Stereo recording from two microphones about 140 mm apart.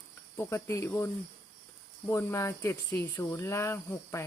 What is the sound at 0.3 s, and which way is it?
Speech, 20° left (ahead or behind).